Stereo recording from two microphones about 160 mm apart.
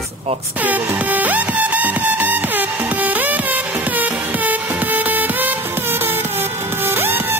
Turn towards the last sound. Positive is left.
turn(degrees=-15)  # may be behind; listen again after turning